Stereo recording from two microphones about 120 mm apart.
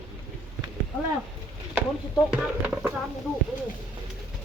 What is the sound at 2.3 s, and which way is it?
Speech, 10° right (ahead or behind).